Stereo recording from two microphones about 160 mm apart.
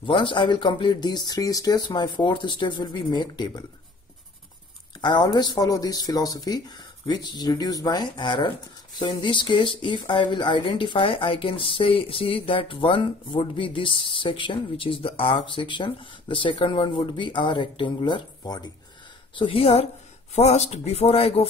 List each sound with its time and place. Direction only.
0.0 s speech: 30° left (ahead or behind)
5.0 s speech: 25° left (ahead or behind)
19.3 s speech: 35° left (ahead or behind)